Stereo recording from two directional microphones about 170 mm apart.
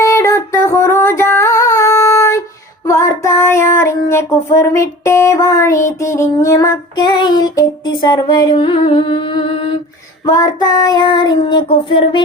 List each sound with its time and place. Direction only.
0.0 s female singing: 15° left (ahead or behind)
2.8 s child singing: 15° left (ahead or behind)
10.2 s child singing: 20° left (ahead or behind)